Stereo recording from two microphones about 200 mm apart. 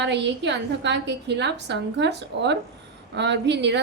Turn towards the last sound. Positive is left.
turn(degrees=-60)  # may be behind; listen again after turning